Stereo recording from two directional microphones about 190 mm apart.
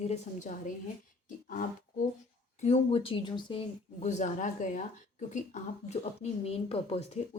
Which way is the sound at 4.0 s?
40° left (ahead or behind).